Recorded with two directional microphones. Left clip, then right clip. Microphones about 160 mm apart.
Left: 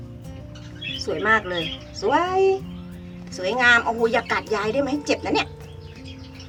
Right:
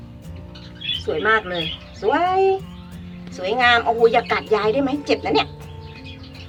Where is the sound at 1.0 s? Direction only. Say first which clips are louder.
Right 1 dB; 10° left (ahead or behind).